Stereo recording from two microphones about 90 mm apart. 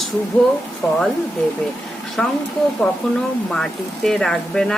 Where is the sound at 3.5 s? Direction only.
5° left (ahead or behind).